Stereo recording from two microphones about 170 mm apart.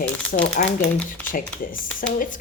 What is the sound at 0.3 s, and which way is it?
Speech, 50° left (ahead or behind).